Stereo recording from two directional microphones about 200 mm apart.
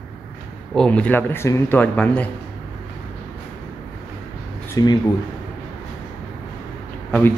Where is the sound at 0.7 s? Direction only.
5° left (ahead or behind).